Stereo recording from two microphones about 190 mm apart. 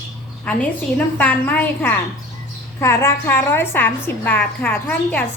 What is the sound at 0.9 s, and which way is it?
A woman's voice, 10° left (ahead or behind).